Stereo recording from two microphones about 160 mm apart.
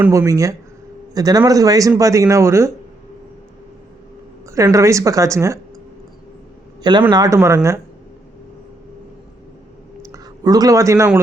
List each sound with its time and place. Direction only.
0.1 s speech: 20° right (ahead or behind)
4.5 s speech: 20° right (ahead or behind)
7.1 s speech: 25° right (ahead or behind)
10.0 s speech: 20° right (ahead or behind)